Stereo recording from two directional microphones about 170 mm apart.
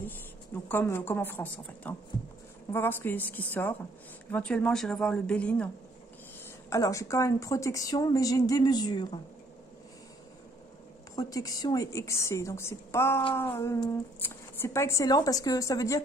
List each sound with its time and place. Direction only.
0.7 s a woman's voice: 15° left (ahead or behind)
6.7 s a woman's voice: 20° left (ahead or behind)
11.1 s a woman's voice: 20° left (ahead or behind)